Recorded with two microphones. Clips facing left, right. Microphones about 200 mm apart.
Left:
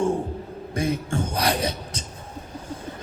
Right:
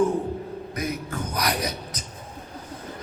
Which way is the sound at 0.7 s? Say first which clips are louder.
Left 6 dB; 30° left (ahead or behind).